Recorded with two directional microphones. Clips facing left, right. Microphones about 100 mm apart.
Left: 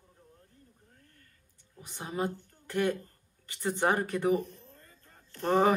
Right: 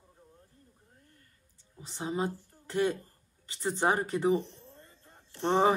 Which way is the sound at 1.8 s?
20° right (ahead or behind).